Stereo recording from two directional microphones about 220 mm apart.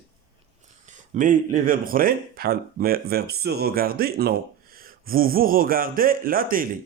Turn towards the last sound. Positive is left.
turn(degrees=-40)  # may be behind; listen again after turning